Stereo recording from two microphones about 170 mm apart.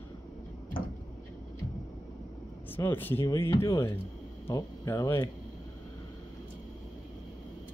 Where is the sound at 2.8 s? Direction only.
10° left (ahead or behind).